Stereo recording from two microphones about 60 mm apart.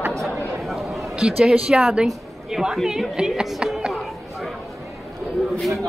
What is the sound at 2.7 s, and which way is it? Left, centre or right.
A woman's voice, centre.